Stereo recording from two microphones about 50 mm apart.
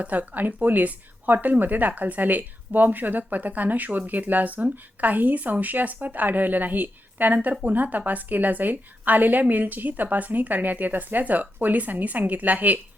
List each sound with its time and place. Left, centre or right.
0.0 s a woman's voice: right